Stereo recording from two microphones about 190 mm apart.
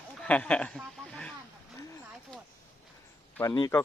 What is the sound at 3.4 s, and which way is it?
Speech, 20° left (ahead or behind).